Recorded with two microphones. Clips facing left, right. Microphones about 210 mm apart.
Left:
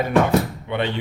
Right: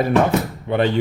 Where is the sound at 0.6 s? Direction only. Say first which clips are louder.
Right 5 dB; 40° right (ahead or behind).